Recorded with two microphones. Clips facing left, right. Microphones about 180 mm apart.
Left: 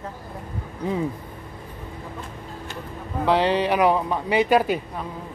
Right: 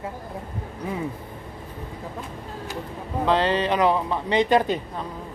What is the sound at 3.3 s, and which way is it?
Speech, 15° left (ahead or behind).